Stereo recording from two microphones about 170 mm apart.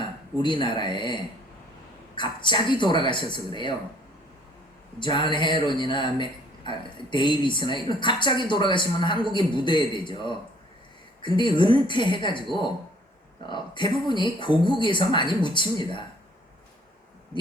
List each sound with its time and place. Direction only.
0.0 s a woman's voice: 30° left (ahead or behind)
4.9 s a woman's voice: 30° left (ahead or behind)
13.5 s a woman's voice: 25° left (ahead or behind)